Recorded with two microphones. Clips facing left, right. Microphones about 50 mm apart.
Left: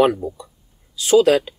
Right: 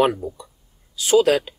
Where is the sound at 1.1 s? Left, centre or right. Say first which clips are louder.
Left 2 dB; centre.